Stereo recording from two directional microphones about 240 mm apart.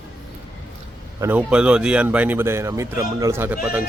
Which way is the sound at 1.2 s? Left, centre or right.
Centre.